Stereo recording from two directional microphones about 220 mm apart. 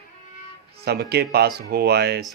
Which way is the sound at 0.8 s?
45° right (ahead or behind).